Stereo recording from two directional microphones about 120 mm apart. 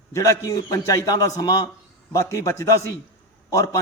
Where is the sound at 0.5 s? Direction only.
30° left (ahead or behind).